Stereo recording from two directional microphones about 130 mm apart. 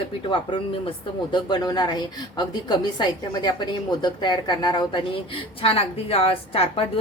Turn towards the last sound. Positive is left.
turn(degrees=50)  # may be behind; listen again after turning